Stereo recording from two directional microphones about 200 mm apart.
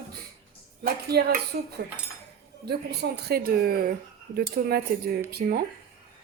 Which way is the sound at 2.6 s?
55° right (ahead or behind).